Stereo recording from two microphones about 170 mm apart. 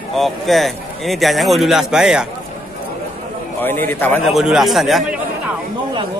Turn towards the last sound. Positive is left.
turn(degrees=0)  # may be behind; listen again after turning